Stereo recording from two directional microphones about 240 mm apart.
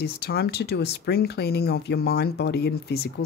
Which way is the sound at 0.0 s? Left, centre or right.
Left.